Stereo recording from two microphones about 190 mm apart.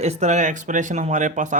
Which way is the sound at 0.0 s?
35° right (ahead or behind).